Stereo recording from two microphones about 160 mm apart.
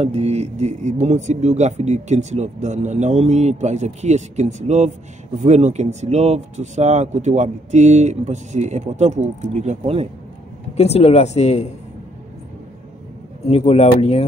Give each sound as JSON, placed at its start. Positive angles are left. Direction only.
{"t": 0.0, "sound": "speech", "side_deg": -40}
{"t": 10.8, "sound": "speech", "side_deg": 40}
{"t": 13.5, "sound": "speech", "side_deg": 40}